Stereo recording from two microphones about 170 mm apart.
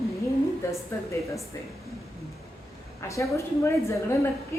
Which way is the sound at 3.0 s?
15° left (ahead or behind).